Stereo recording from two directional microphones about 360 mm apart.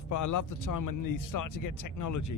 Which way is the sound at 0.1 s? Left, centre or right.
Left.